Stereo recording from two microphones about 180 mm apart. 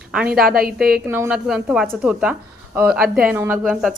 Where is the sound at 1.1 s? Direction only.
10° right (ahead or behind).